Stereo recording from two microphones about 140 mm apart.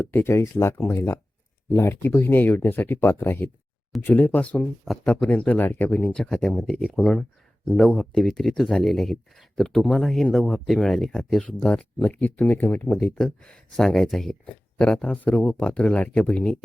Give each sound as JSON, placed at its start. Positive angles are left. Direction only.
{"t": 0.0, "sound": "speech", "side_deg": 15}
{"t": 6.1, "sound": "speech", "side_deg": 0}